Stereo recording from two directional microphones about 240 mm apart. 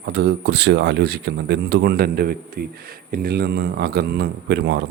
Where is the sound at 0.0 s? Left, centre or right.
Right.